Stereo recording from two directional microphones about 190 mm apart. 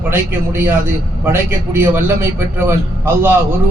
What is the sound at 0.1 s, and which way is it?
A man's voice, 10° right (ahead or behind).